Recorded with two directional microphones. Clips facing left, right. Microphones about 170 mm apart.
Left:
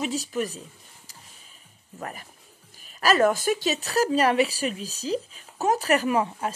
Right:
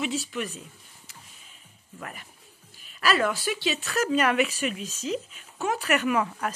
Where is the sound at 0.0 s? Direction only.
40° left (ahead or behind).